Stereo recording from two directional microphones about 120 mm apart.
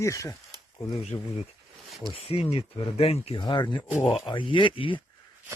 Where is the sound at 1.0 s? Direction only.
60° left (ahead or behind).